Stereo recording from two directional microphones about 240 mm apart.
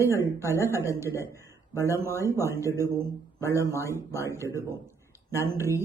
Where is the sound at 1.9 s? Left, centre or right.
Centre.